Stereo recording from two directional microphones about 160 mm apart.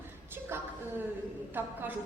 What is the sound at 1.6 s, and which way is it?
Speech, 10° right (ahead or behind).